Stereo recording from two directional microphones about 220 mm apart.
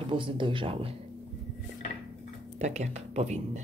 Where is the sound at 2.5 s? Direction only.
30° right (ahead or behind).